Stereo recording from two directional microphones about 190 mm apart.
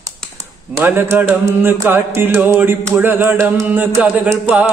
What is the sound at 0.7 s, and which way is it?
Mantra, 15° right (ahead or behind).